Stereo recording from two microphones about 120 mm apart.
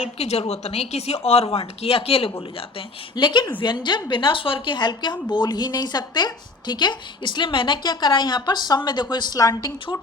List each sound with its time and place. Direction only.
0.0 s a woman's voice: 60° left (ahead or behind); by 9.7 s 30° left (ahead or behind)